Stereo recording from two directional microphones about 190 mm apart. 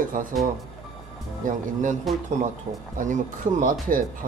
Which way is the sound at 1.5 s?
40° right (ahead or behind).